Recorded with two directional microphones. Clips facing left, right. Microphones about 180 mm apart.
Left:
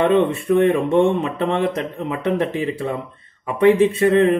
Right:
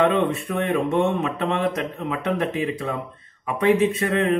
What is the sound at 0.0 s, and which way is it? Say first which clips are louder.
Speech: left 3 dB; 30° left (ahead or behind).